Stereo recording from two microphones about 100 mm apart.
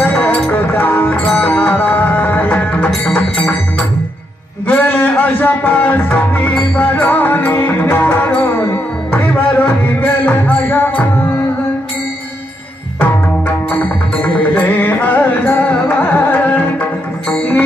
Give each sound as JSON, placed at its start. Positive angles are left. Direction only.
{"t": 0.0, "sound": "music", "side_deg": 20}
{"t": 4.6, "sound": "music", "side_deg": 20}
{"t": 13.7, "sound": "music", "side_deg": 15}